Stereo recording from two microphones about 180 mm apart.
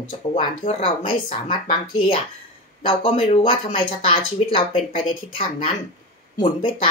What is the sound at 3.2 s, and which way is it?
Speech, 35° left (ahead or behind).